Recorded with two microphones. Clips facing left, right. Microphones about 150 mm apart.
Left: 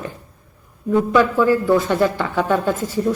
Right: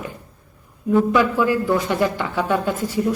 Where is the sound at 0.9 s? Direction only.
10° right (ahead or behind).